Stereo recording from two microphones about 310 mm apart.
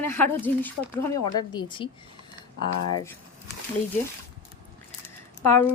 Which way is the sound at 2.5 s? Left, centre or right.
Left.